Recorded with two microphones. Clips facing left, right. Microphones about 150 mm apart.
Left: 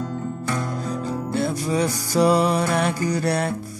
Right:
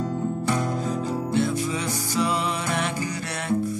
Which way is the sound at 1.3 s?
40° left (ahead or behind).